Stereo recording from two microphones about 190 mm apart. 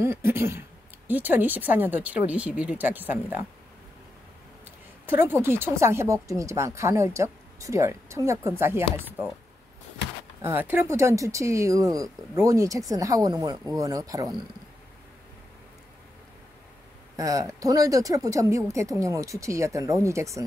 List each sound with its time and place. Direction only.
0.0 s speech: 15° right (ahead or behind)
5.0 s speech: 10° right (ahead or behind)
10.4 s speech: 10° right (ahead or behind)
17.2 s speech: 15° right (ahead or behind)